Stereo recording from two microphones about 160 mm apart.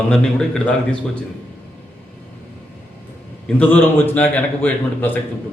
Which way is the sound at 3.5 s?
10° left (ahead or behind).